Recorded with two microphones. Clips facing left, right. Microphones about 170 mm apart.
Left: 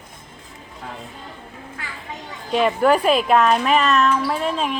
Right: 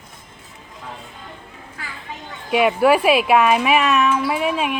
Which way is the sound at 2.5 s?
5° right (ahead or behind).